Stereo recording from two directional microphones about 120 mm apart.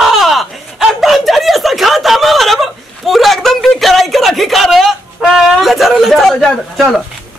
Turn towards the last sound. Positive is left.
turn(degrees=0)  # may be behind; listen again after turning